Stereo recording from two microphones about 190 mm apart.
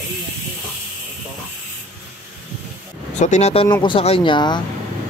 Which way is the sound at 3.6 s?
20° left (ahead or behind).